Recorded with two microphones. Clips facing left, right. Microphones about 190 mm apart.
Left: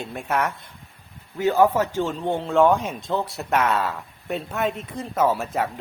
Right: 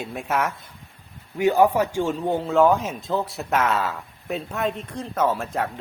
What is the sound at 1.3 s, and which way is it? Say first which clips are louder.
Speech: right 1 dB; 15° right (ahead or behind).